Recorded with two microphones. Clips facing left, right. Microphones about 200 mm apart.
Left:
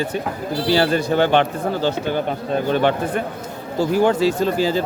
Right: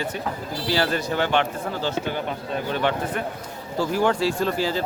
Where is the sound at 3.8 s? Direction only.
20° left (ahead or behind).